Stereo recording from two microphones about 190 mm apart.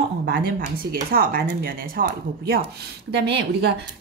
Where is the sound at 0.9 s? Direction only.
50° right (ahead or behind).